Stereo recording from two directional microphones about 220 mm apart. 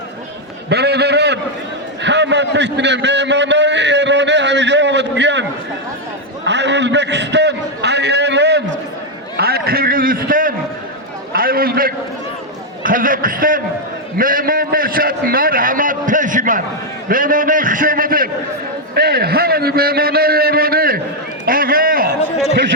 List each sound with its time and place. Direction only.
0.7 s a sound: 50° right (ahead or behind)
12.8 s a man's voice: 40° right (ahead or behind)
21.4 s run: 40° right (ahead or behind)